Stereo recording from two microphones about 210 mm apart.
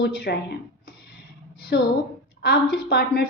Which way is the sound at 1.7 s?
55° left (ahead or behind).